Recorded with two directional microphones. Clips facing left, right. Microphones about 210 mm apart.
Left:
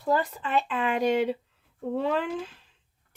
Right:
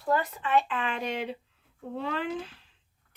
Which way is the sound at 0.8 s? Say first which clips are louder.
Left 8 dB; 40° left (ahead or behind).